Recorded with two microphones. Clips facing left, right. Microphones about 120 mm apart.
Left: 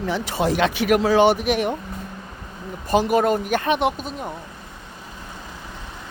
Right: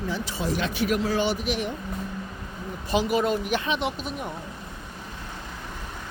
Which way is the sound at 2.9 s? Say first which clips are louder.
Left 5 dB; 50° left (ahead or behind).